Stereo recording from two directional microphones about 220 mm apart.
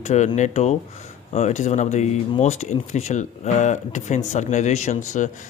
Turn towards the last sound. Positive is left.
turn(degrees=35)  # may be behind; listen again after turning